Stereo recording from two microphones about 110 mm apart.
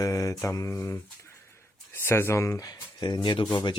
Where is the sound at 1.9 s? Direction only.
20° left (ahead or behind); by 3.7 s 40° left (ahead or behind).